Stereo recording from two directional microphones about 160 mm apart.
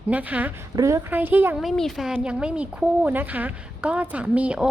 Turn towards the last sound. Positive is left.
turn(degrees=-5)  # may be behind; listen again after turning